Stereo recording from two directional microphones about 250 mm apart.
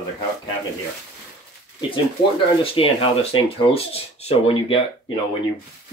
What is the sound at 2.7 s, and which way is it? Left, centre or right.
Speech, left.